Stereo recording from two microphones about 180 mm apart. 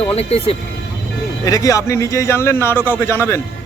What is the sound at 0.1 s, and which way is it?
Speech, 35° left (ahead or behind).